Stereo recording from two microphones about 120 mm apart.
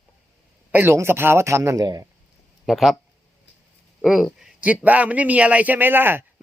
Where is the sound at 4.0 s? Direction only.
5° right (ahead or behind).